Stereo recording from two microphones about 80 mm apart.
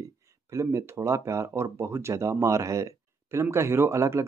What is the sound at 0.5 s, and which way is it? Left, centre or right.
Speech, right.